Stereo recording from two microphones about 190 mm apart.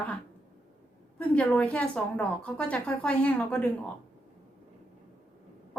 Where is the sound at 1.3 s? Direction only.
5° left (ahead or behind).